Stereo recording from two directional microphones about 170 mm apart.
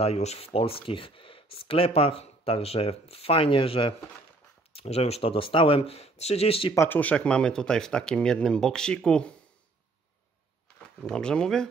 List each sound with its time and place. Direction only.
0.0 s speech: 40° left (ahead or behind)
6.7 s speech: 15° left (ahead or behind)
10.8 s speech: 5° left (ahead or behind)